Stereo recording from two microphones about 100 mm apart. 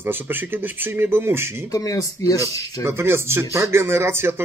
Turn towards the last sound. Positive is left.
turn(degrees=-25)  # may be behind; listen again after turning